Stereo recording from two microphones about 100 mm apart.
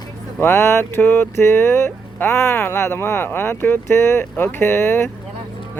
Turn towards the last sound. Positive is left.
turn(degrees=25)  # may be behind; listen again after turning